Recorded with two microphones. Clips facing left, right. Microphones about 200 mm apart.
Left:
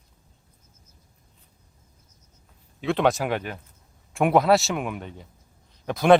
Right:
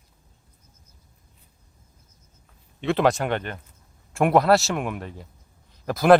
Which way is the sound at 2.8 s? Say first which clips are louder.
Right 1 dB; centre (ahead or behind).